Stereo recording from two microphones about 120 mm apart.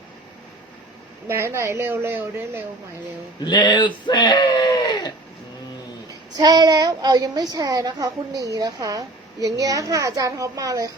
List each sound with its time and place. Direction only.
1.3 s a woman's voice: 20° right (ahead or behind)
3.4 s speech: 40° left (ahead or behind)
6.3 s a child's voice: 35° right (ahead or behind)